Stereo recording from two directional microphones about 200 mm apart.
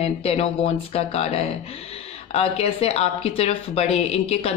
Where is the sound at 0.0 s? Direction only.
30° left (ahead or behind).